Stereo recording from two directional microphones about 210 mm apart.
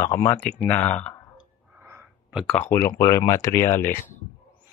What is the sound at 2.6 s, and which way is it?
Speech, 10° left (ahead or behind).